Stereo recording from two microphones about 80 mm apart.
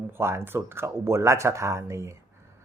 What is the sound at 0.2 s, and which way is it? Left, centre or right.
Speech, right.